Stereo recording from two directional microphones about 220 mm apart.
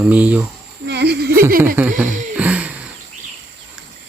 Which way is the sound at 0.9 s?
50° right (ahead or behind).